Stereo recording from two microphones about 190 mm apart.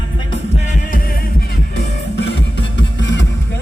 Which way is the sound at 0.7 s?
50° left (ahead or behind).